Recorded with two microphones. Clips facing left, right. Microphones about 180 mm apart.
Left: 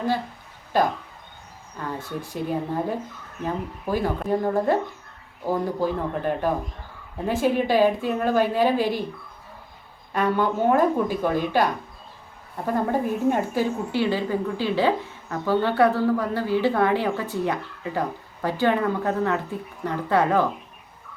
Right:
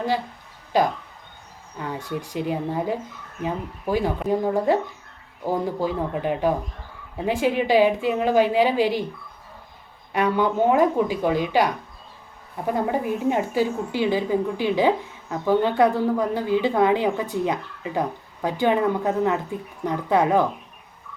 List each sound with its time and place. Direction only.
1.8 s a woman's voice: 15° right (ahead or behind)
10.1 s a woman's voice: 15° right (ahead or behind)